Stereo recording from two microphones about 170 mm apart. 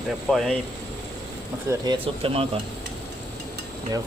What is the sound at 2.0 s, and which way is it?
Speech, 35° right (ahead or behind).